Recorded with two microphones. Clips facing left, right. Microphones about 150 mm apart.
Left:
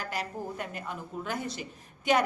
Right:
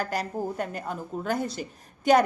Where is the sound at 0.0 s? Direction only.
40° right (ahead or behind).